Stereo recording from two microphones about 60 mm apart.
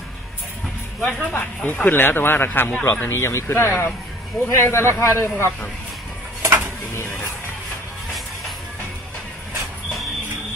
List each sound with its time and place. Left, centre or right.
1.3 s speech: left
3.2 s speech: left
6.4 s a sound: right